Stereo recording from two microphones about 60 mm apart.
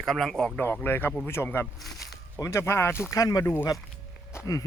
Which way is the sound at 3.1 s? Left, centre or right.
Left.